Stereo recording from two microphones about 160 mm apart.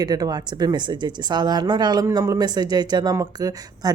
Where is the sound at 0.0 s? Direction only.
25° right (ahead or behind).